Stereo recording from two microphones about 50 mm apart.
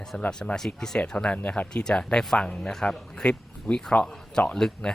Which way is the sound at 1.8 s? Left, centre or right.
Centre.